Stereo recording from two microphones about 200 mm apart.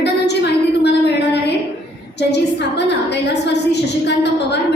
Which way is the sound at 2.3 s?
60° left (ahead or behind).